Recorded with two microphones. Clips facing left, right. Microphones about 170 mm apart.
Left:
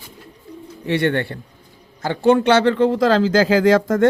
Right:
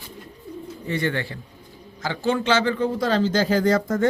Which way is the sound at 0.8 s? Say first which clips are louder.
Left 7 dB; 70° left (ahead or behind).